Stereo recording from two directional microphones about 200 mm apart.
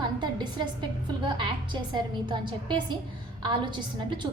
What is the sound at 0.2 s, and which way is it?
A woman's voice, 20° right (ahead or behind).